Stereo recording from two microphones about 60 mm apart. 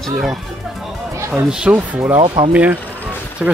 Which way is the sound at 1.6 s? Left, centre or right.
Right.